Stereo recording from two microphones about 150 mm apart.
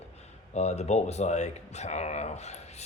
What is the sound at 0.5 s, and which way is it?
Speech, 45° left (ahead or behind).